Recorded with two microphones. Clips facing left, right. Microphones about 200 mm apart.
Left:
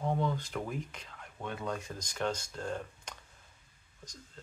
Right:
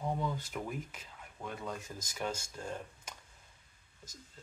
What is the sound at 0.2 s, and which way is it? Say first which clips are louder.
Speech: left 3 dB; 5° right (ahead or behind).